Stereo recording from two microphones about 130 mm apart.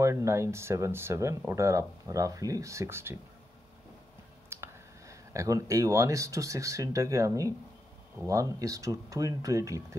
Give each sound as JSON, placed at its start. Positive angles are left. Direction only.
{"t": 0.0, "sound": "speech", "side_deg": -25}
{"t": 4.5, "sound": "speech", "side_deg": -20}